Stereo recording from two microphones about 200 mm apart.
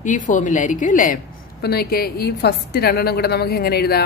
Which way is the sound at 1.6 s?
50° left (ahead or behind).